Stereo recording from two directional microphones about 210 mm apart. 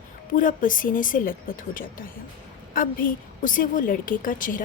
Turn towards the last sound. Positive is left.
turn(degrees=40)  # may be behind; listen again after turning